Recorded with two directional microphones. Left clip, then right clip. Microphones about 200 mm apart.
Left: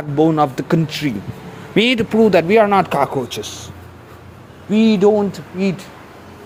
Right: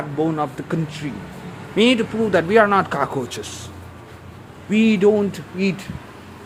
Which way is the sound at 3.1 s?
10° left (ahead or behind).